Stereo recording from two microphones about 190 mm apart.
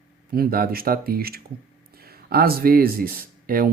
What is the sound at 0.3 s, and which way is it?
Speech, 50° right (ahead or behind).